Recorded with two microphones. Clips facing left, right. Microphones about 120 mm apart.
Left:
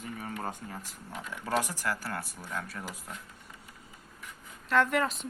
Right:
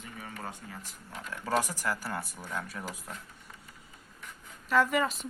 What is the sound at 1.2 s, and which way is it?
Speech, centre (ahead or behind).